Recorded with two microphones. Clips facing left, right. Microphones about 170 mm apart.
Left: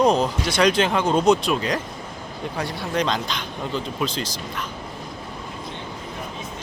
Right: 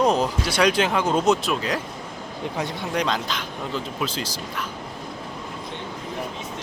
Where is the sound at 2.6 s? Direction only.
20° right (ahead or behind).